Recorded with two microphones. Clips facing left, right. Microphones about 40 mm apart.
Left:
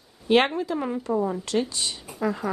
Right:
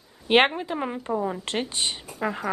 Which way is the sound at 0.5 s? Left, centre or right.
Right.